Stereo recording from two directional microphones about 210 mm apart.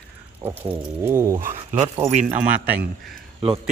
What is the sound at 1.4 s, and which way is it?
Speech, 35° right (ahead or behind).